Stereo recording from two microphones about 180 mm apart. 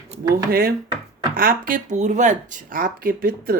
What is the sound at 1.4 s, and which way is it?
Speech, 50° right (ahead or behind).